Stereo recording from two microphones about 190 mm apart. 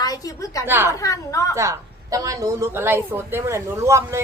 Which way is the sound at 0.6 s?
10° right (ahead or behind).